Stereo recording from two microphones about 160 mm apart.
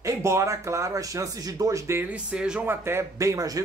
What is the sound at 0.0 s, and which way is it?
A man's voice, 15° right (ahead or behind).